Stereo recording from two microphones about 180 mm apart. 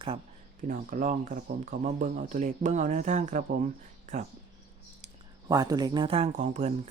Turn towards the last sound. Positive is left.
turn(degrees=-40)  # may be behind; listen again after turning